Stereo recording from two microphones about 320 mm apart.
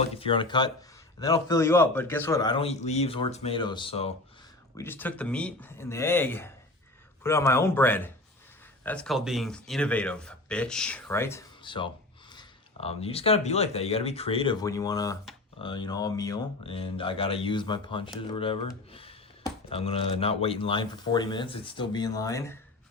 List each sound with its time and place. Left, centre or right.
0.0 s speech: centre
4.8 s speech: centre